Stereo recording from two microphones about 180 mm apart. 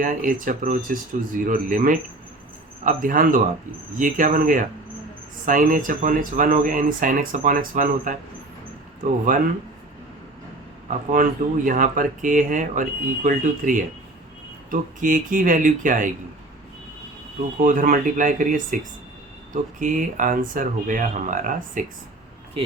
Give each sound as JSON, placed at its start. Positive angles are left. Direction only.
{"t": 0.0, "sound": "speech", "side_deg": -45}
{"t": 10.8, "sound": "speech", "side_deg": -50}
{"t": 17.6, "sound": "speech", "side_deg": -50}
{"t": 22.6, "sound": "speech", "side_deg": -30}